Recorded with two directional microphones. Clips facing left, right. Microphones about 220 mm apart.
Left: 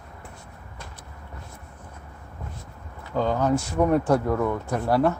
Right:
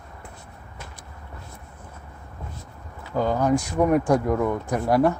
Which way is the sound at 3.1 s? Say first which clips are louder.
Right 1 dB; 10° right (ahead or behind).